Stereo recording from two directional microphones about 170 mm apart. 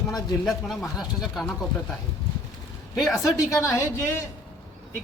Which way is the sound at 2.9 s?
Centre (ahead or behind).